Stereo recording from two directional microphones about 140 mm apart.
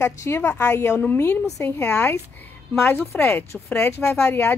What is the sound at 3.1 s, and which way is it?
A woman's voice, 15° left (ahead or behind).